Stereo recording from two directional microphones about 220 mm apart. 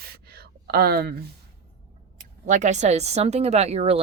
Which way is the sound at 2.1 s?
35° right (ahead or behind).